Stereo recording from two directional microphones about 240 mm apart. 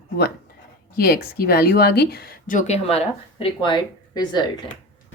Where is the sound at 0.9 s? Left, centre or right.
Left; by 4.4 s centre.